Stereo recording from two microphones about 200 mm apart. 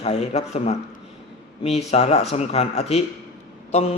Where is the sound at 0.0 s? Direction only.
30° left (ahead or behind).